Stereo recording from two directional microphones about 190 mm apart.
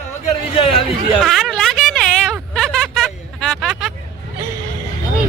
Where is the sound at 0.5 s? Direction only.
30° left (ahead or behind).